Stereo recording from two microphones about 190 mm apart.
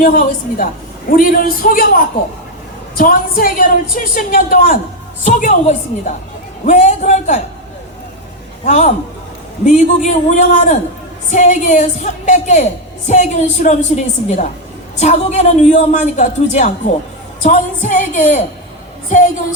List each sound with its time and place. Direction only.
0.0 s a man's voice: 45° left (ahead or behind)
8.6 s a man's voice: 40° left (ahead or behind)